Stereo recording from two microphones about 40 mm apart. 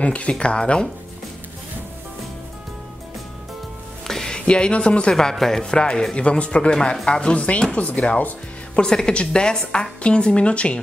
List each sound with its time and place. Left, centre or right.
0.0 s a woman's voice: left
4.1 s music: centre
4.5 s a woman's voice: left
5.3 s a woman's voice: centre
7.7 s speech: left
8.8 s a woman's voice: centre